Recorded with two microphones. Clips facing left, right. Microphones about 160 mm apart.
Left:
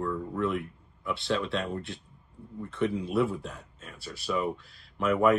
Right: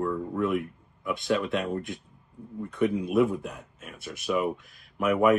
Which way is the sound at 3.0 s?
15° right (ahead or behind).